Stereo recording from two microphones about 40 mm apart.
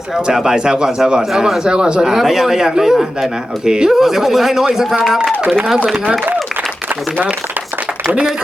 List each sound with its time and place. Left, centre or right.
0.5 s speech: centre